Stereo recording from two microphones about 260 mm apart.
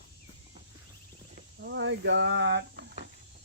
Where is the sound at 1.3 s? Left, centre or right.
Right.